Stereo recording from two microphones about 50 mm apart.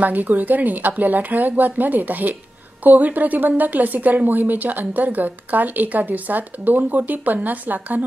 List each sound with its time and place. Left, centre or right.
0.0 s a woman's voice: right